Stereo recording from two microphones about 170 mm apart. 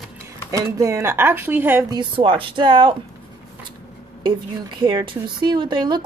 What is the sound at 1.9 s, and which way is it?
Speech, 30° right (ahead or behind).